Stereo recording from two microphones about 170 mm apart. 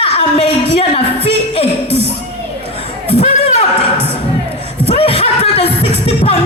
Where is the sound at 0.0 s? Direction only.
35° left (ahead or behind).